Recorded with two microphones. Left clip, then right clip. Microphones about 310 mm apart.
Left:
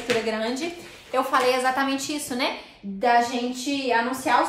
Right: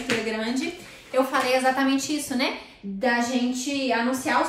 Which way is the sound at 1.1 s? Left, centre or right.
Centre.